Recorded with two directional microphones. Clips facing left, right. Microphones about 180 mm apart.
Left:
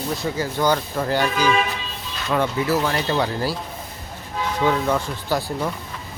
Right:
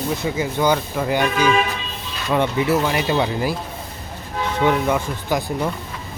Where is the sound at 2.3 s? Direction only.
20° right (ahead or behind).